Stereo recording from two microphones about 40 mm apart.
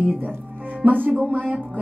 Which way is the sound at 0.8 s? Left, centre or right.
Right.